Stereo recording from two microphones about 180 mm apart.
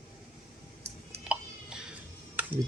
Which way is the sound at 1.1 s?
5° right (ahead or behind).